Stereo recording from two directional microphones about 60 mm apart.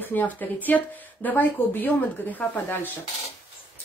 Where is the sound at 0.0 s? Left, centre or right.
Left.